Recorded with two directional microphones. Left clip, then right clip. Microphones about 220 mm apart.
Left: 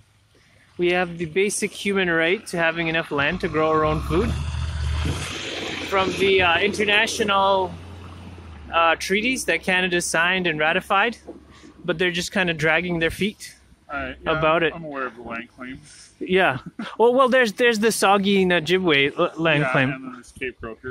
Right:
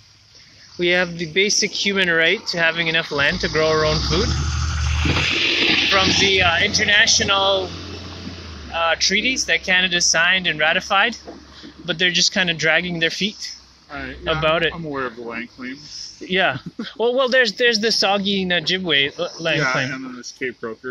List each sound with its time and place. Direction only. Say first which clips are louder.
0.7 s speech: right 3 dB; 20° left (ahead or behind)
5.1 s music: right 14 dB; 45° left (ahead or behind)
6.2 s speech: right 2 dB; 25° left (ahead or behind)
8.7 s speech: right 1 dB; 30° left (ahead or behind)
15.0 s speech: right 3 dB; 20° left (ahead or behind)
16.3 s speech: even; 35° left (ahead or behind)
20.3 s speech: right 4 dB; 15° left (ahead or behind)